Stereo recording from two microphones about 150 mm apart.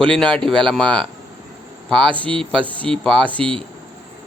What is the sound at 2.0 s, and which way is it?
Speech, 35° right (ahead or behind).